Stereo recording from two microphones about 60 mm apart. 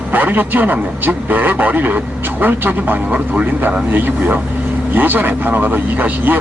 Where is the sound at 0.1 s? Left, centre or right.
Right.